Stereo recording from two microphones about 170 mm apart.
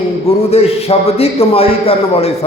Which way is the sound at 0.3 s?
40° left (ahead or behind).